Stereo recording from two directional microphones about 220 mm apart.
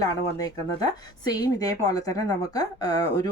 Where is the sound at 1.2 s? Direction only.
15° left (ahead or behind).